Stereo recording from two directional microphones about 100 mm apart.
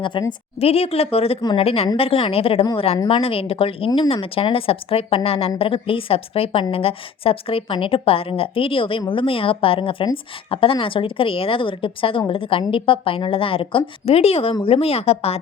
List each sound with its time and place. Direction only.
0.1 s a woman's voice: 55° left (ahead or behind)
0.6 s a woman's voice: 90° left